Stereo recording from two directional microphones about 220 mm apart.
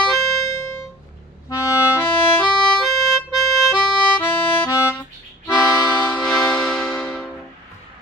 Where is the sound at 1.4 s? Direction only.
15° left (ahead or behind).